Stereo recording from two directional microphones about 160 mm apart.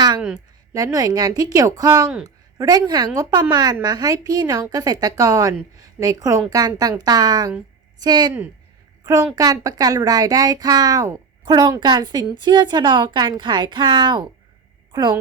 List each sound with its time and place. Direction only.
0.7 s a woman's voice: 20° right (ahead or behind)
9.3 s speech: 20° right (ahead or behind)